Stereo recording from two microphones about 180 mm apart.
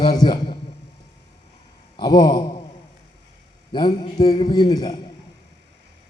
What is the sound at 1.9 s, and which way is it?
Speech, 25° left (ahead or behind).